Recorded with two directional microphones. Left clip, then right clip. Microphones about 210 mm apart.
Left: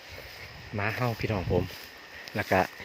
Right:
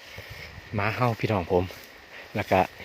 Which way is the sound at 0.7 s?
15° right (ahead or behind).